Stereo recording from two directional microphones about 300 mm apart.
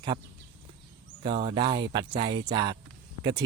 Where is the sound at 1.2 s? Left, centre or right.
Centre.